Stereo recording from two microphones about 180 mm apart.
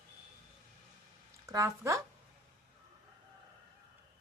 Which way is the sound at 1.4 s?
20° right (ahead or behind).